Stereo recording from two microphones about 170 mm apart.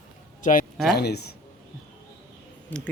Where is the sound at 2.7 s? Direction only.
10° left (ahead or behind).